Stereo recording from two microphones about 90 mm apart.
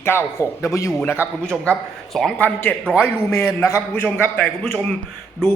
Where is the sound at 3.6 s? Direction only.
30° left (ahead or behind).